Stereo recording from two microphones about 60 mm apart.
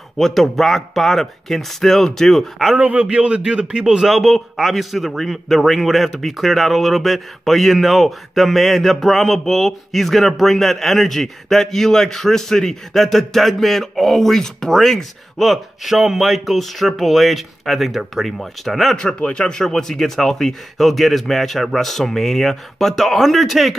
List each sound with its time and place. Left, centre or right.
0.2 s a man's voice: centre
2.7 s a man's voice: right
3.8 s a man's voice: centre
18.9 s a man's voice: centre